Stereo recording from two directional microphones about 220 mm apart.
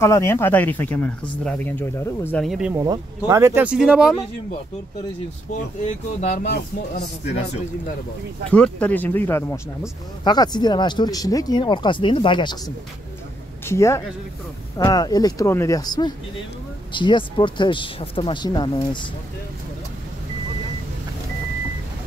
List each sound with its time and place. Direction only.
0.0 s speech: 10° left (ahead or behind)
2.7 s speech: 15° right (ahead or behind)
5.8 s speech: 35° left (ahead or behind)
8.5 s speech: 5° left (ahead or behind); by 18.7 s 20° left (ahead or behind)